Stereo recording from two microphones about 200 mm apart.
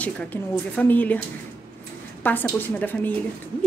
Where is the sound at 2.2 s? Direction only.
10° left (ahead or behind).